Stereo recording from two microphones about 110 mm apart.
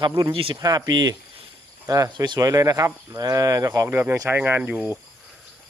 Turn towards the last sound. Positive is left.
turn(degrees=-15)  # may be behind; listen again after turning